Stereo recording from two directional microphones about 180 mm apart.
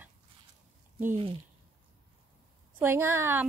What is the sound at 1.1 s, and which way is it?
Speech, 30° right (ahead or behind).